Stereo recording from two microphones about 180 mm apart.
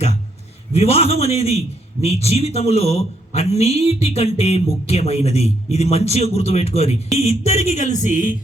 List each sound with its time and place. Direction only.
0.7 s a man's voice: 35° left (ahead or behind)